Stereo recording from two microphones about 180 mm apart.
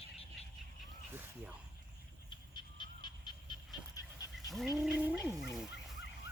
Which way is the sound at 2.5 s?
25° left (ahead or behind).